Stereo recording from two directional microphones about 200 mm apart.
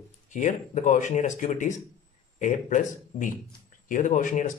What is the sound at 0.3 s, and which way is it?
Speech, 40° left (ahead or behind).